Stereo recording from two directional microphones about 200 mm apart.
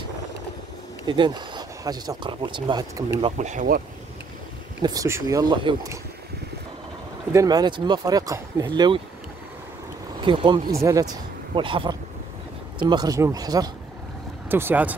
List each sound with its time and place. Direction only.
1.0 s speech: 25° right (ahead or behind)
3.2 s speech: 35° right (ahead or behind)
4.8 s speech: 15° right (ahead or behind)
7.3 s speech: 20° right (ahead or behind)
10.2 s speech: 25° right (ahead or behind); by 15.0 s 10° right (ahead or behind)